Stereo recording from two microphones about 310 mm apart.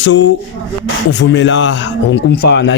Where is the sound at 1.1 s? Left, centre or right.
Left.